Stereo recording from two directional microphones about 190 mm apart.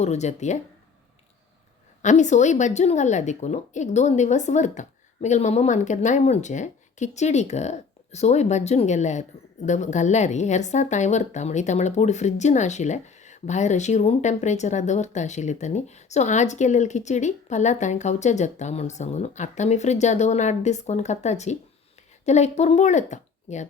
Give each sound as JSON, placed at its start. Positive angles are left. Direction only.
{"t": 0.0, "sound": "speech", "side_deg": 35}
{"t": 2.0, "sound": "speech", "side_deg": 40}